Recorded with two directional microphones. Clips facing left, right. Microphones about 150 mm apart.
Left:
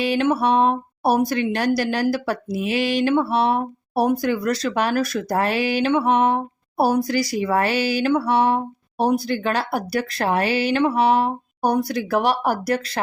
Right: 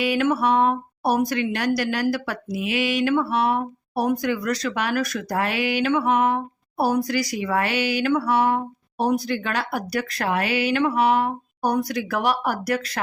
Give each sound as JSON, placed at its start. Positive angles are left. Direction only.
{"t": 0.0, "sound": "speech", "side_deg": 30}